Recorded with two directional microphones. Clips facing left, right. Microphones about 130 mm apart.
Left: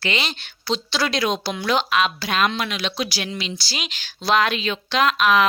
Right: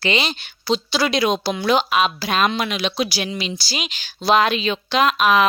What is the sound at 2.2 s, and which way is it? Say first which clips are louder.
Speech: right 2 dB; 25° right (ahead or behind).